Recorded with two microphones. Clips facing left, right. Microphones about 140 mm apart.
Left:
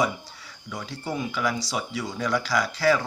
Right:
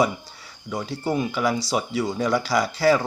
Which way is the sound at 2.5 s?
35° right (ahead or behind).